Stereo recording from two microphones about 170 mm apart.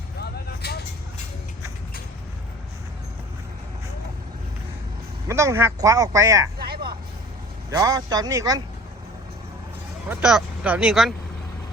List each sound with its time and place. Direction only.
0.2 s vehicle: 70° left (ahead or behind)
5.3 s speech: 15° right (ahead or behind)
6.6 s vehicle: 65° right (ahead or behind)
7.7 s a man's voice: 20° right (ahead or behind)
10.1 s speech: 5° right (ahead or behind)